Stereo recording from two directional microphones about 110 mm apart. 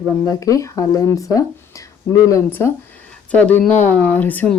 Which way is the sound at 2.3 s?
20° left (ahead or behind).